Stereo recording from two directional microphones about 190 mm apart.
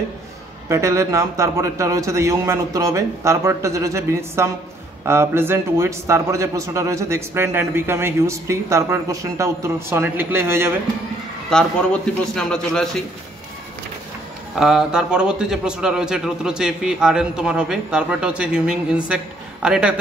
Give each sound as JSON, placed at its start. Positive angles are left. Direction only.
{"t": 0.7, "sound": "speech", "side_deg": -15}
{"t": 11.5, "sound": "a man's voice", "side_deg": 5}
{"t": 14.5, "sound": "a man's voice", "side_deg": 0}